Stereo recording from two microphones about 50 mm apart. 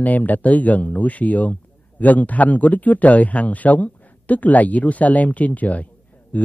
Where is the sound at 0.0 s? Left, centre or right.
Left.